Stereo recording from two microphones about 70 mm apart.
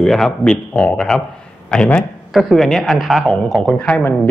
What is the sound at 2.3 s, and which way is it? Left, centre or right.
Speech, centre.